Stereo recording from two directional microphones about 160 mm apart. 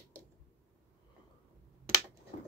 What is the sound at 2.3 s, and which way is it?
Scratch, 45° left (ahead or behind).